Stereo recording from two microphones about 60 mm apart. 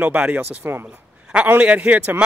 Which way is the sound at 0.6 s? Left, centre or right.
Right.